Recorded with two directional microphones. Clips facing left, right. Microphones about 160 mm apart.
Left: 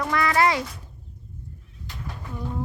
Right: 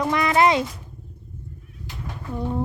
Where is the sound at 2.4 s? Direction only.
30° right (ahead or behind).